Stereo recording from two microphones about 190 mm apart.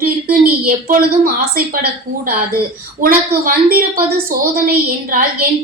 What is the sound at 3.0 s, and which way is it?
Speech, 50° right (ahead or behind).